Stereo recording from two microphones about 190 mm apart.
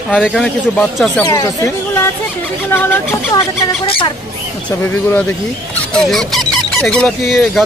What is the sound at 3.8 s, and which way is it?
Speech, 30° left (ahead or behind).